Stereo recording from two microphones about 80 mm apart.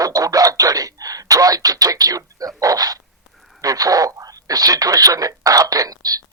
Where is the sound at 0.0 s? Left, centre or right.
Right.